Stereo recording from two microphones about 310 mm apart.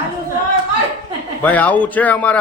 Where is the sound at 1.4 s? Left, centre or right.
Centre.